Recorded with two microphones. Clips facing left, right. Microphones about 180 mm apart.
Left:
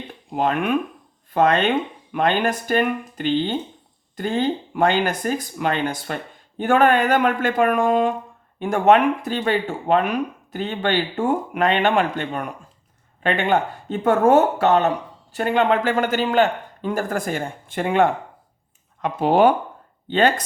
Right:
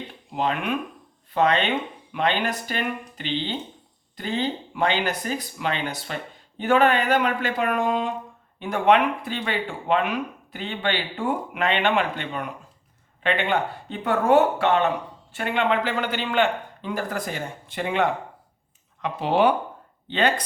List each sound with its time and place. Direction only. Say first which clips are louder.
0.3 s speech: left 5 dB; 50° left (ahead or behind)